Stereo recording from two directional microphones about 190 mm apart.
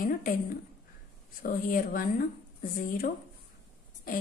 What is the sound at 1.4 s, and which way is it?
A woman's voice, 45° left (ahead or behind).